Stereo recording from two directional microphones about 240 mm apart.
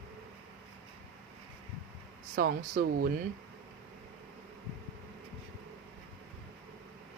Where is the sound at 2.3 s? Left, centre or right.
Right.